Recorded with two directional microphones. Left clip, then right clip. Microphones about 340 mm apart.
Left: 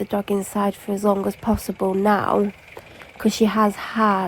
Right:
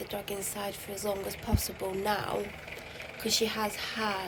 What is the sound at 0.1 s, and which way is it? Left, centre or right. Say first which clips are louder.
Speech: left 13 dB; centre.